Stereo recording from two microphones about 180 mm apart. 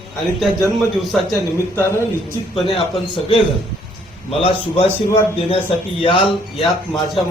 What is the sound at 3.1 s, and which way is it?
A man's voice, 30° left (ahead or behind).